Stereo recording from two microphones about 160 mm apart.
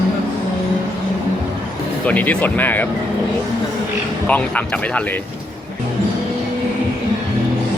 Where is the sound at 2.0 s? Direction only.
10° left (ahead or behind).